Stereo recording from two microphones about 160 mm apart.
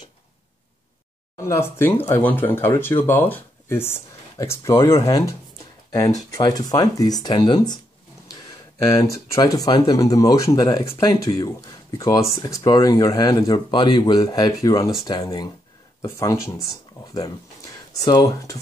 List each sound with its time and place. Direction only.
1.4 s speech: 15° left (ahead or behind)
6.3 s speech: 25° left (ahead or behind)
9.3 s speech: 20° left (ahead or behind)
17.9 s speech: 20° left (ahead or behind)